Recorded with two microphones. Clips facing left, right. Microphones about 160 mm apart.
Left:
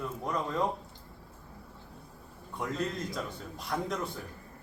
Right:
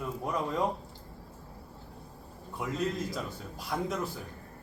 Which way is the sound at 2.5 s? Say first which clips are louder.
Right 1 dB; 5° right (ahead or behind).